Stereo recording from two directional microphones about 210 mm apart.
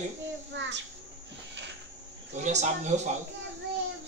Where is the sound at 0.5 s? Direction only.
60° right (ahead or behind).